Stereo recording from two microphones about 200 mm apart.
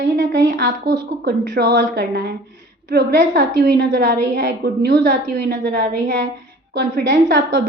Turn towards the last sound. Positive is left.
turn(degrees=-60)  # may be behind; listen again after turning